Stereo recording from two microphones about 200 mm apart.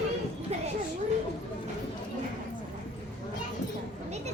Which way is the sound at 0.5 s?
30° right (ahead or behind).